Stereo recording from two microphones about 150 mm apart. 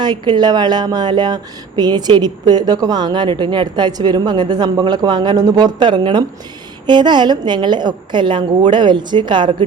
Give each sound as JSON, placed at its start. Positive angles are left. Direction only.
{"t": 0.0, "sound": "a woman's voice", "side_deg": -30}